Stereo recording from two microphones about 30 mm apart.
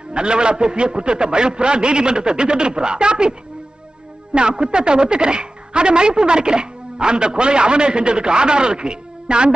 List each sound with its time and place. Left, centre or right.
0.1 s speech: right